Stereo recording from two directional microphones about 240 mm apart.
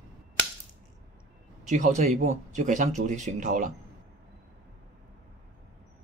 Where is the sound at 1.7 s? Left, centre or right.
Right.